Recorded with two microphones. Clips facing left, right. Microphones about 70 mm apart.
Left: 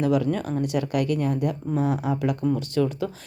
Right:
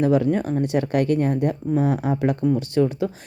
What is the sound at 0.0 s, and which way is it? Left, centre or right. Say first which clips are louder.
A woman's voice: right 4 dB; right.